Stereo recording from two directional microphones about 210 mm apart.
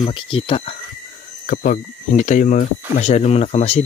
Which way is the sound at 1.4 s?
40° left (ahead or behind).